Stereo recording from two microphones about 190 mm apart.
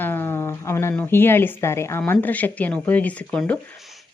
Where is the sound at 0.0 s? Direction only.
10° left (ahead or behind).